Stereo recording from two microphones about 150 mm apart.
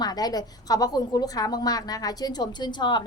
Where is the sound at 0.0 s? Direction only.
25° left (ahead or behind).